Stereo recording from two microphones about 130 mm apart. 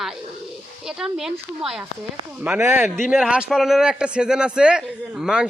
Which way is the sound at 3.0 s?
5° right (ahead or behind).